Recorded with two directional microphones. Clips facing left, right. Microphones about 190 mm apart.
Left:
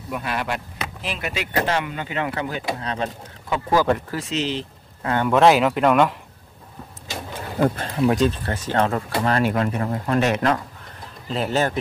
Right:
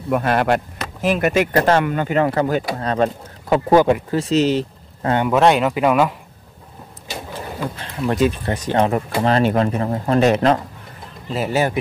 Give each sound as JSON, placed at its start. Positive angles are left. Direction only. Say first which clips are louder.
{"t": 0.1, "sound": "speech", "louder": "right 9 dB", "side_deg": -50}
{"t": 5.3, "sound": "speech", "louder": "left 1 dB", "side_deg": 0}
{"t": 7.6, "sound": "speech", "louder": "left 10 dB", "side_deg": 50}
{"t": 8.0, "sound": "speech", "louder": "even", "side_deg": 0}
{"t": 8.3, "sound": "speech", "louder": "right 4 dB", "side_deg": -15}
{"t": 11.2, "sound": "speech", "louder": "right 2 dB", "side_deg": -5}